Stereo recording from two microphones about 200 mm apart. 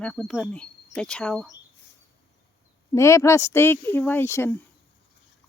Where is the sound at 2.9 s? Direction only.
15° left (ahead or behind).